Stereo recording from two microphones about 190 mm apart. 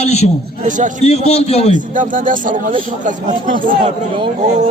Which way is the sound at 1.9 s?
45° right (ahead or behind).